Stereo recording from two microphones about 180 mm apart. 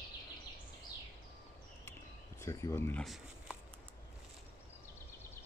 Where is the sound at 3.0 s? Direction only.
Centre (ahead or behind).